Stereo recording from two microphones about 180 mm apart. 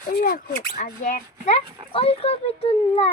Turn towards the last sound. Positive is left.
turn(degrees=35)  # may be behind; listen again after turning